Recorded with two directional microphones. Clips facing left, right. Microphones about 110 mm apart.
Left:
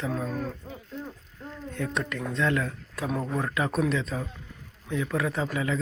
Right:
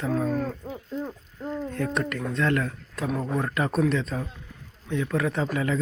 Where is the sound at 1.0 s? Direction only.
45° right (ahead or behind).